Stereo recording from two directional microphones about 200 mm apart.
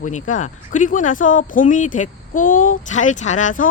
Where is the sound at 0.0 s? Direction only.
40° left (ahead or behind).